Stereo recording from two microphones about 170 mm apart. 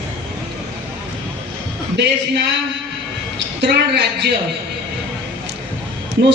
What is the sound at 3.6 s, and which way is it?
Speech, 75° right (ahead or behind).